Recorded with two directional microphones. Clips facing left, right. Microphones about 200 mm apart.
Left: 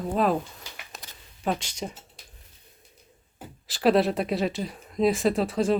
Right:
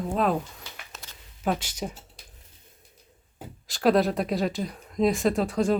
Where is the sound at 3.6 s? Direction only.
Centre (ahead or behind).